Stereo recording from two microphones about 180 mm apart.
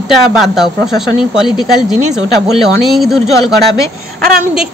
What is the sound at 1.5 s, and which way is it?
Speech, 25° left (ahead or behind).